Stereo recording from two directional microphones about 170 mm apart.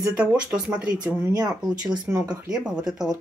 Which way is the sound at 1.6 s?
5° right (ahead or behind).